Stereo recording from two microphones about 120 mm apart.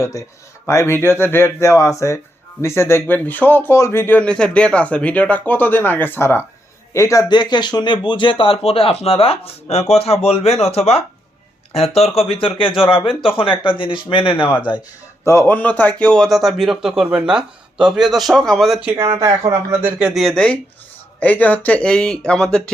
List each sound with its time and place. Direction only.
0.0 s a man's voice: 25° left (ahead or behind)
15.2 s a man's voice: 20° left (ahead or behind); by 18.8 s centre (ahead or behind)
18.9 s speech: 20° right (ahead or behind)
20.0 s a man's voice: 5° right (ahead or behind)